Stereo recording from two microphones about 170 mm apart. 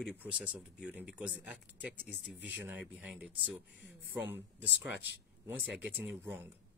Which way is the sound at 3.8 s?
80° right.